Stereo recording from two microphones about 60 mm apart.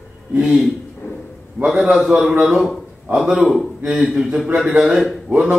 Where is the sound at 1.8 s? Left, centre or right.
Centre.